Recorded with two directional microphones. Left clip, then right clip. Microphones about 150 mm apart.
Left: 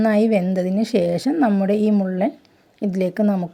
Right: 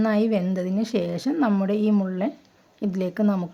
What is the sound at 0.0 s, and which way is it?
A woman's voice, 25° left (ahead or behind).